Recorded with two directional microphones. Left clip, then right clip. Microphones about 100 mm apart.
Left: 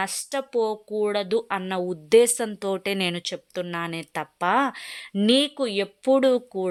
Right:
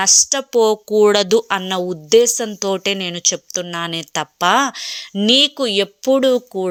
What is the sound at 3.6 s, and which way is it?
Speech, 20° right (ahead or behind).